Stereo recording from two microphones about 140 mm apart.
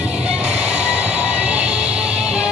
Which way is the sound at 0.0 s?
10° right (ahead or behind).